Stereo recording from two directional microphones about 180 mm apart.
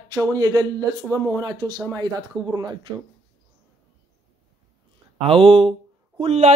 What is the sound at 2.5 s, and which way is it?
Speech, 20° right (ahead or behind).